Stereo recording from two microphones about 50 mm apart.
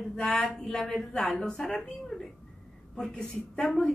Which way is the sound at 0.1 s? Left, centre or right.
Centre.